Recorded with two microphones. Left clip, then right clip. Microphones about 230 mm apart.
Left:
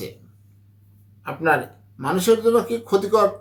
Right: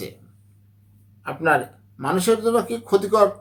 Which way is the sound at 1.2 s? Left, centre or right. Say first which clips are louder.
Even; centre.